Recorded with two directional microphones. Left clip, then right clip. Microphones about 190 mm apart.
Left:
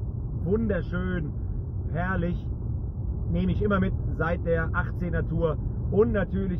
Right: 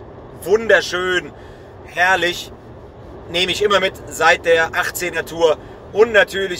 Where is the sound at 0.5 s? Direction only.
15° right (ahead or behind).